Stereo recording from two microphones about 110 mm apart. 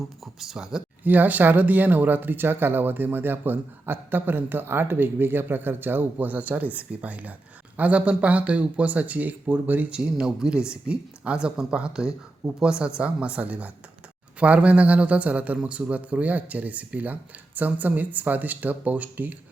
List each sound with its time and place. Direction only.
0.3 s speech: 5° right (ahead or behind)